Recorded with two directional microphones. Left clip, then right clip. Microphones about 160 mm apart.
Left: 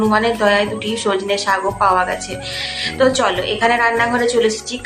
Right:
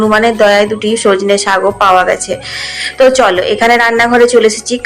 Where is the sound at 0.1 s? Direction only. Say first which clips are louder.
Right 8 dB; 35° right (ahead or behind).